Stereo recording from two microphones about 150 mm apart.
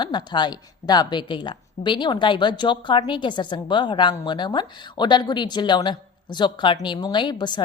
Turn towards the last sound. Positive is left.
turn(degrees=30)  # may be behind; listen again after turning